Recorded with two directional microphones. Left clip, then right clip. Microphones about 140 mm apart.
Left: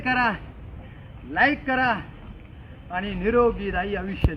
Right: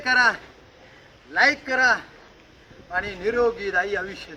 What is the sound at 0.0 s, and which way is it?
A man's voice, 20° right (ahead or behind).